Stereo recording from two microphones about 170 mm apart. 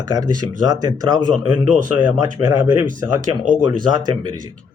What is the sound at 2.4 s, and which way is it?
Speech, 20° right (ahead or behind).